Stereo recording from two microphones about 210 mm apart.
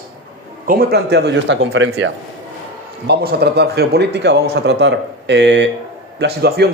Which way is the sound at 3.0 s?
50° right (ahead or behind).